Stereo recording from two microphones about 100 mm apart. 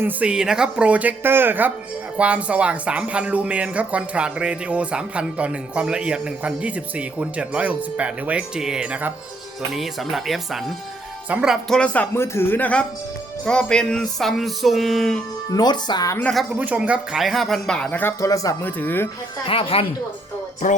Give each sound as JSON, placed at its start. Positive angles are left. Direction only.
{"t": 0.0, "sound": "speech", "side_deg": -10}
{"t": 9.7, "sound": "music", "side_deg": 0}
{"t": 12.1, "sound": "speech", "side_deg": 25}
{"t": 13.4, "sound": "music", "side_deg": 10}
{"t": 15.4, "sound": "speech", "side_deg": 40}
{"t": 16.2, "sound": "music", "side_deg": 0}
{"t": 16.6, "sound": "music", "side_deg": -15}
{"t": 18.2, "sound": "speech", "side_deg": 35}
{"t": 18.6, "sound": "speech", "side_deg": 20}
{"t": 19.5, "sound": "speech", "side_deg": 70}